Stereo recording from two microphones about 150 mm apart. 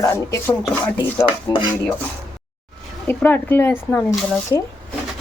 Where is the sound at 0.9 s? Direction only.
35° left (ahead or behind).